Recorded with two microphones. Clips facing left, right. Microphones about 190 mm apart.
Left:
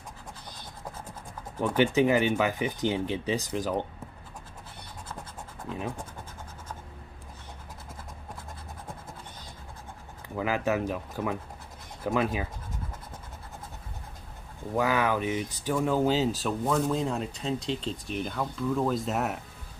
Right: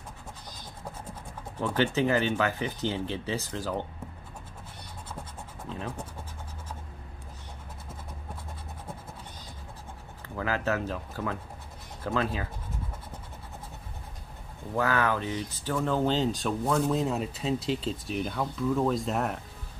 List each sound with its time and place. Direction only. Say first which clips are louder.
1.6 s speech: left 3 dB; 15° left (ahead or behind)
5.7 s speech: left 3 dB; 15° left (ahead or behind)
10.2 s speech: left 2 dB; 15° left (ahead or behind)
14.8 s speech: left 1 dB; 15° left (ahead or behind)